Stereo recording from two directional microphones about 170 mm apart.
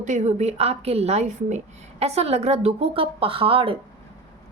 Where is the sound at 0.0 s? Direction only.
45° right (ahead or behind).